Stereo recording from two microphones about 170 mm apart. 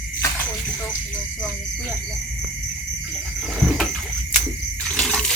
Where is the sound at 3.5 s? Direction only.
Centre (ahead or behind).